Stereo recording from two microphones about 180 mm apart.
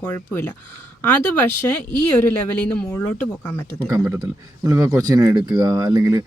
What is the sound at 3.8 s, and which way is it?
Speech, 20° right (ahead or behind).